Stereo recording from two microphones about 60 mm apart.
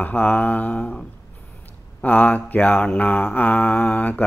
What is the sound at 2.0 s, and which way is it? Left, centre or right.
Mantra, left.